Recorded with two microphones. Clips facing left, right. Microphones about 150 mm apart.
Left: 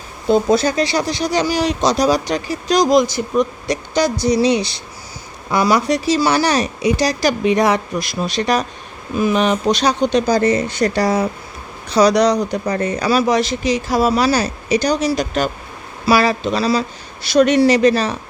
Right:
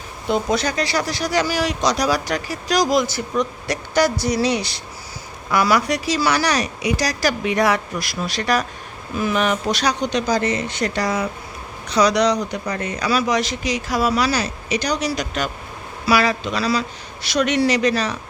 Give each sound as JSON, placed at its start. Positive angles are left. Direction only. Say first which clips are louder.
{"t": 0.3, "sound": "speech", "louder": "left 6 dB", "side_deg": 30}